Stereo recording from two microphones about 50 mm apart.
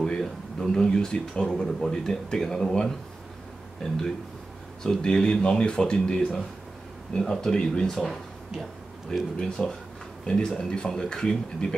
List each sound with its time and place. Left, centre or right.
0.0 s speech: centre
8.1 s a sound: centre
9.4 s speech: centre